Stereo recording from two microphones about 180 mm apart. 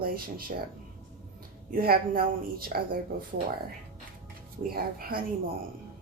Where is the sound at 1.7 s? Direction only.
55° right (ahead or behind).